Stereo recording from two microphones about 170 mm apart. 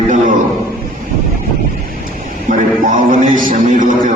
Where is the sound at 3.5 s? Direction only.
50° right (ahead or behind).